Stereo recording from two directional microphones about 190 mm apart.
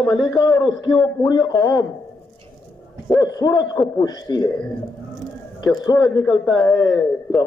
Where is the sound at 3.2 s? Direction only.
20° left (ahead or behind).